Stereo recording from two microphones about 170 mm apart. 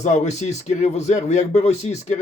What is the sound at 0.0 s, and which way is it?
Speech, 45° left (ahead or behind).